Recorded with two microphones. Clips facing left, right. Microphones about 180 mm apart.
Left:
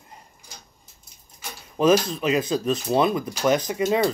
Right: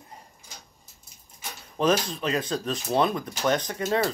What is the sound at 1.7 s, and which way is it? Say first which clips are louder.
Speech: left 5 dB; 5° left (ahead or behind).